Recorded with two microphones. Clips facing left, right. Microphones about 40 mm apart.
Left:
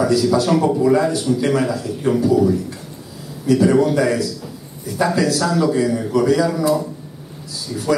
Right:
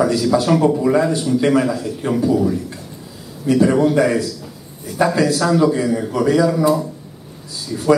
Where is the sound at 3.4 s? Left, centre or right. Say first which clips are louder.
Even; right.